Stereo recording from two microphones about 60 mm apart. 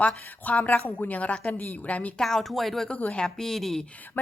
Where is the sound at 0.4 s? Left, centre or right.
Left.